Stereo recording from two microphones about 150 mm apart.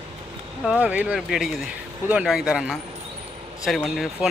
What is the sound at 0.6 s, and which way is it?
Speech, 5° right (ahead or behind).